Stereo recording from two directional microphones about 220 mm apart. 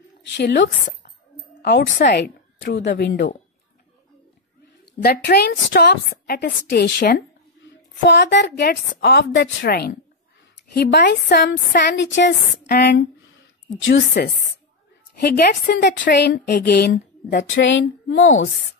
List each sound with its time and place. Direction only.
0.3 s a woman's voice: 50° left (ahead or behind)
5.0 s a woman's voice: 45° left (ahead or behind)